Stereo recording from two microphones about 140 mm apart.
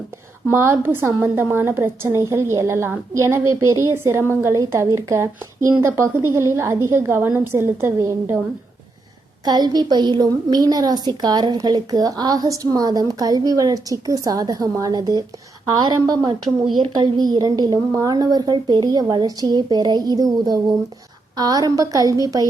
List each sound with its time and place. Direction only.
0.4 s a woman's voice: 20° right (ahead or behind)
9.4 s a woman's voice: 30° right (ahead or behind)